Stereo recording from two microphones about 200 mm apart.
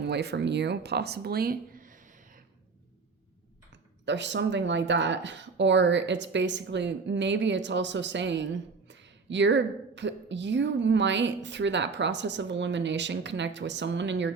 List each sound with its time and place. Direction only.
0.0 s a woman's voice: 60° right (ahead or behind); by 2.0 s 40° right (ahead or behind)
4.0 s a woman's voice: 60° right (ahead or behind)